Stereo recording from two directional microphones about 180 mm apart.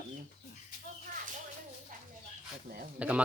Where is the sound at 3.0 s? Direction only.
5° right (ahead or behind).